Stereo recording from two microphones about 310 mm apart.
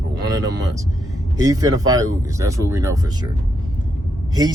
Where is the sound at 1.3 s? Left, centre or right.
Centre.